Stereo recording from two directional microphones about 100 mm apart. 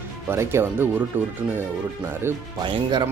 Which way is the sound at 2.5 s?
50° right (ahead or behind).